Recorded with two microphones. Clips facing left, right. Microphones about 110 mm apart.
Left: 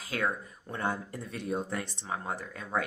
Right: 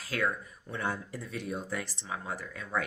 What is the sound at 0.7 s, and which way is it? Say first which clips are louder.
Speech: left 2 dB; 45° left (ahead or behind).